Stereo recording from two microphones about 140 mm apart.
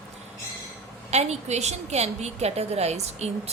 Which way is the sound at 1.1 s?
50° right (ahead or behind).